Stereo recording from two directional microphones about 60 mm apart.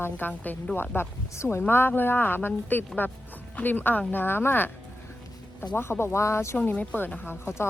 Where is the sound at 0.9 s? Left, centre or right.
Left.